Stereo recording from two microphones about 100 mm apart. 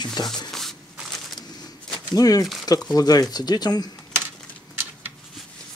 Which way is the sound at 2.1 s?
40° left (ahead or behind).